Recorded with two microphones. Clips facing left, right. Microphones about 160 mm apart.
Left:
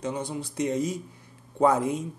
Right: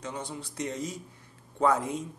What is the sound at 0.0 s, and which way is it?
Speech, 15° left (ahead or behind).